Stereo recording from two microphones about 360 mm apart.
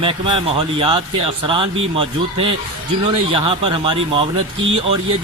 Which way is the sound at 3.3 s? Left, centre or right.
Centre.